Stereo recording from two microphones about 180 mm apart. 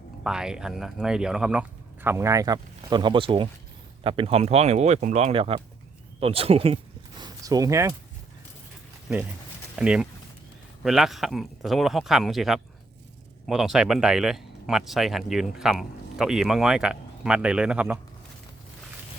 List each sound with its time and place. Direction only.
0.3 s speech: 5° right (ahead or behind); by 6.7 s 30° right (ahead or behind)
7.2 s speech: 20° right (ahead or behind)
9.7 s speech: 5° right (ahead or behind)